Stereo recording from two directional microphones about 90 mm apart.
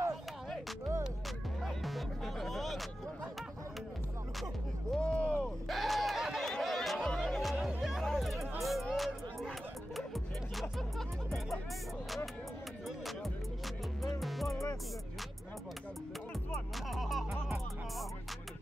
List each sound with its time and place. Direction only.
1.6 s music: centre (ahead or behind)
4.9 s a sound: 10° left (ahead or behind)
5.4 s a sound: centre (ahead or behind)
7.2 s music: centre (ahead or behind)
14.0 s music: centre (ahead or behind)
14.5 s music: 35° left (ahead or behind)
16.9 s music: centre (ahead or behind)